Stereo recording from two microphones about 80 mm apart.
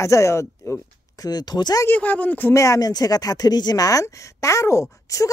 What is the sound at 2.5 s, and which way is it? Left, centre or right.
Speech, left.